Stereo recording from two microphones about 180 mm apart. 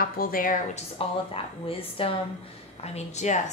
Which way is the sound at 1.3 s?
30° left (ahead or behind).